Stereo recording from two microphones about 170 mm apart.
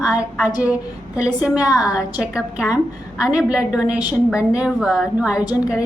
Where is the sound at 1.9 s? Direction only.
5° right (ahead or behind).